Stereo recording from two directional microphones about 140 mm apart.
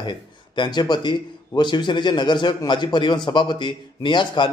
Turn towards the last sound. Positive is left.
turn(degrees=35)  # may be behind; listen again after turning